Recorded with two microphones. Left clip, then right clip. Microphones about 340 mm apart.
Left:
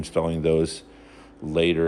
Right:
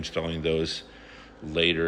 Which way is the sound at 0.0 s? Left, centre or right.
Centre.